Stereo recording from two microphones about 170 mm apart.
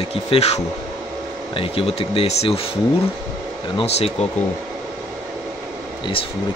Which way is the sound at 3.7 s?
35° left (ahead or behind).